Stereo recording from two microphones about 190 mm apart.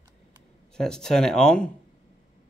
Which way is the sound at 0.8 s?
5° left (ahead or behind).